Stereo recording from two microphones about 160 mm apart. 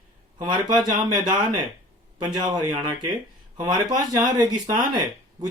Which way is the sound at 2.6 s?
25° right (ahead or behind).